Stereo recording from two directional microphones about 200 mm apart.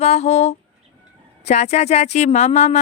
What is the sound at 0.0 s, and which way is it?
A woman's voice, 35° left (ahead or behind).